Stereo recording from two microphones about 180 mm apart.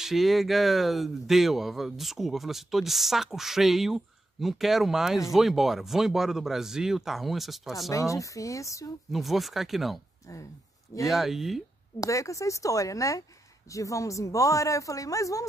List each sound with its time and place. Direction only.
0.0 s speech: centre (ahead or behind)
7.9 s speech: 15° left (ahead or behind)
9.1 s speech: centre (ahead or behind)
11.1 s speech: centre (ahead or behind)
12.0 s speech: 15° left (ahead or behind)